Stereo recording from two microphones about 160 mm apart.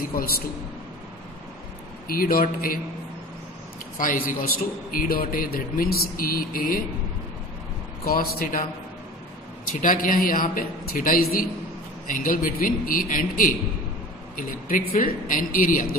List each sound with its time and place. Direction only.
0.0 s speech: 65° left (ahead or behind)
2.0 s a man's voice: 65° left (ahead or behind)
3.9 s speech: 55° left (ahead or behind)
8.0 s speech: 65° left (ahead or behind)
9.8 s speech: 55° left (ahead or behind)